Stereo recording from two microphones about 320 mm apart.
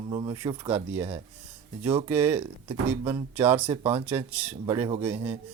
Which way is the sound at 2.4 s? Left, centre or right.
Centre.